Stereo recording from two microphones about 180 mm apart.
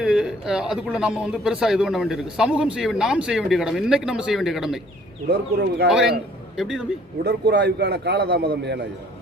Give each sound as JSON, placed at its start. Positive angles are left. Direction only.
{"t": 0.0, "sound": "speech", "side_deg": -5}
{"t": 5.3, "sound": "a man's voice", "side_deg": -70}
{"t": 5.9, "sound": "speech", "side_deg": -5}
{"t": 7.3, "sound": "a man's voice", "side_deg": -70}